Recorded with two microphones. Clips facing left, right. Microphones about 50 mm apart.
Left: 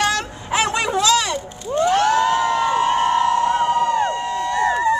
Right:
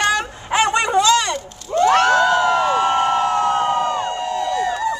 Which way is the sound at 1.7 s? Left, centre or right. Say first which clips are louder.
Right 2 dB; right.